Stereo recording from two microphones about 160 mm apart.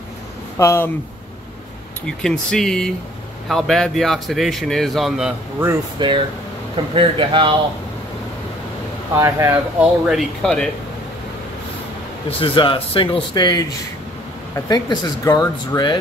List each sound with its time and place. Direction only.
0.6 s speech: 15° left (ahead or behind)
2.0 s a man's voice: 5° left (ahead or behind)
5.9 s speech: 30° right (ahead or behind)
9.1 s speech: 15° right (ahead or behind)
9.8 s a man's voice: centre (ahead or behind)
12.4 s speech: 30° left (ahead or behind)